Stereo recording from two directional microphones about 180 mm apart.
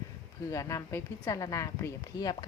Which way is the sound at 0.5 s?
15° left (ahead or behind).